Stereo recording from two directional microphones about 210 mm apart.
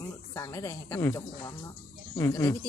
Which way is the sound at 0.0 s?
15° left (ahead or behind).